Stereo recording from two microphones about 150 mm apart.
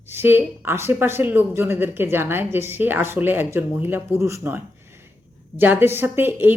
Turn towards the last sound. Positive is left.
turn(degrees=-15)  # may be behind; listen again after turning